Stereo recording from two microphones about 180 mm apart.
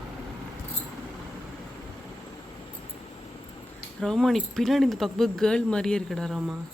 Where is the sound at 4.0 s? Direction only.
5° left (ahead or behind).